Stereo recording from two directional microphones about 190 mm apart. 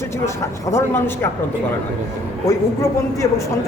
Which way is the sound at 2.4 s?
15° left (ahead or behind).